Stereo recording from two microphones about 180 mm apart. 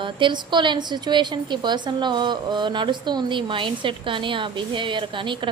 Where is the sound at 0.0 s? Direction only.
25° right (ahead or behind).